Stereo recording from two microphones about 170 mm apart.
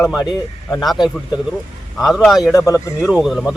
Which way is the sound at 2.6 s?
20° left (ahead or behind).